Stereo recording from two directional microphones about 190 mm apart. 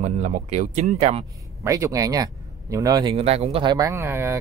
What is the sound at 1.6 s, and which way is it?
Speech, 15° right (ahead or behind).